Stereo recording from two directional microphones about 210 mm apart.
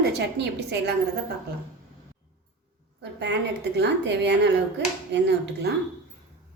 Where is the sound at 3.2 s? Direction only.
55° right (ahead or behind).